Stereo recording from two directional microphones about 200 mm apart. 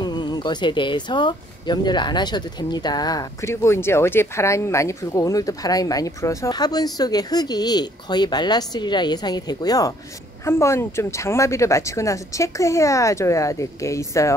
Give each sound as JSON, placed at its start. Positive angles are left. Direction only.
{"t": 0.0, "sound": "speech", "side_deg": 20}